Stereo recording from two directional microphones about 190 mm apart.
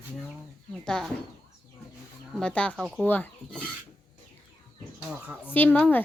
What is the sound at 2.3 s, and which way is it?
A woman's voice, 5° left (ahead or behind).